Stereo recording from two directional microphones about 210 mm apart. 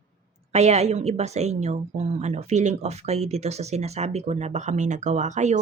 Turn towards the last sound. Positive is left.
turn(degrees=-35)  # may be behind; listen again after turning